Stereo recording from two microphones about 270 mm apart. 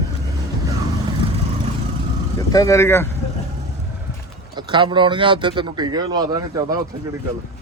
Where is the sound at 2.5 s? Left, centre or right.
Centre.